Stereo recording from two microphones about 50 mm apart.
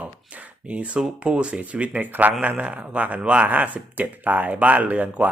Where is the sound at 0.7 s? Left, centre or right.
Right.